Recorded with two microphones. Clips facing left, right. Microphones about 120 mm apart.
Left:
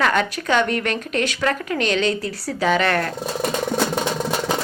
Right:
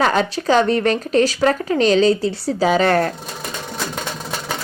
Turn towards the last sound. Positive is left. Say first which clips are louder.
# right 4 dB
turn(degrees=-35)  # may be behind; listen again after turning